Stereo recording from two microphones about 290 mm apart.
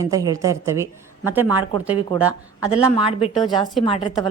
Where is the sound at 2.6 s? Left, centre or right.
Centre.